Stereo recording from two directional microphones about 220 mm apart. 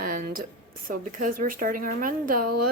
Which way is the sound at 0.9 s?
35° right (ahead or behind).